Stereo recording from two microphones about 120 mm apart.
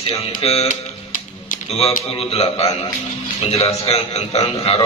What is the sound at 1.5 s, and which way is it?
A man's voice, 75° left (ahead or behind).